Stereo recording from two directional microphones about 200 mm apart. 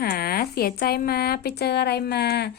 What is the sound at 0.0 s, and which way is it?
A woman's voice, 50° left (ahead or behind).